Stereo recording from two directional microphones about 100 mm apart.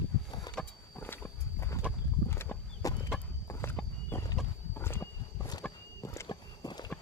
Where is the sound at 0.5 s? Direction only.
40° left (ahead or behind).